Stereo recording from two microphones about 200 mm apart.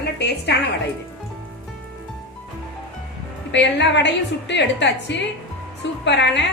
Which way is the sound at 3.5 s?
60° left (ahead or behind).